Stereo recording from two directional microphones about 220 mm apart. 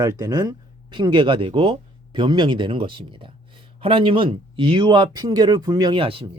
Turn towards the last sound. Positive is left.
turn(degrees=-25)  # may be behind; listen again after turning